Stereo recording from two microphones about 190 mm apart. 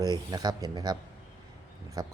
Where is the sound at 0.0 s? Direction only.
20° right (ahead or behind).